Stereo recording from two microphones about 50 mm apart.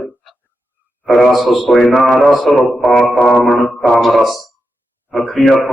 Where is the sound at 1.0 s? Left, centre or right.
Centre.